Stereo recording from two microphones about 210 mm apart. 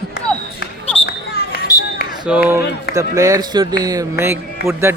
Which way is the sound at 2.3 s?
10° right (ahead or behind).